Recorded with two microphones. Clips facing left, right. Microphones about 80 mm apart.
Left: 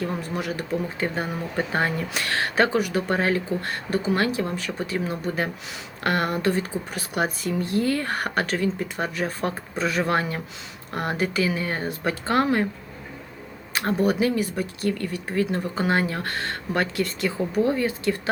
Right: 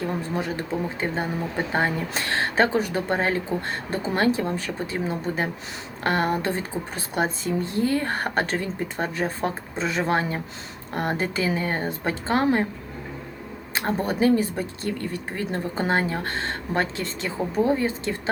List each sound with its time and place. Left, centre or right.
0.3 s speech: right
13.7 s speech: right